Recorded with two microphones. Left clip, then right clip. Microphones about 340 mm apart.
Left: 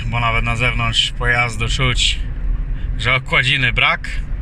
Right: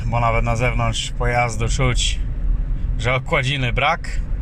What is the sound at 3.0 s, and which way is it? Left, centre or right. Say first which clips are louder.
Speech: left 4 dB; centre.